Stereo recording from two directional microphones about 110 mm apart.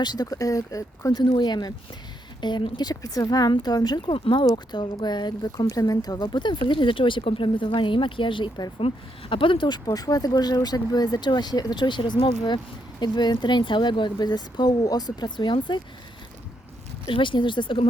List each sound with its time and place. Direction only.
0.0 s speech: 40° left (ahead or behind)
8.9 s speech: 75° left (ahead or behind)
9.3 s speech: 50° left (ahead or behind)
17.1 s speech: 50° left (ahead or behind)